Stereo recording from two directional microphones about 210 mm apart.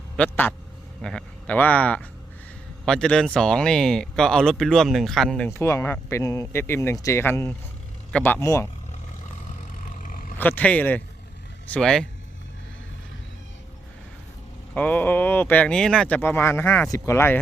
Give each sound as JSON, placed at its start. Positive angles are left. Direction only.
{"t": 0.2, "sound": "speech", "side_deg": 10}
{"t": 5.5, "sound": "speech", "side_deg": 15}
{"t": 9.7, "sound": "vehicle", "side_deg": 40}
{"t": 10.3, "sound": "speech", "side_deg": 10}
{"t": 14.7, "sound": "speech", "side_deg": 5}